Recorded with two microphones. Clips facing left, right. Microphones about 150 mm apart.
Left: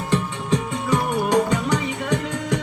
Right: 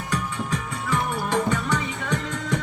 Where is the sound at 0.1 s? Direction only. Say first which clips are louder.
Left 5 dB; 20° left (ahead or behind).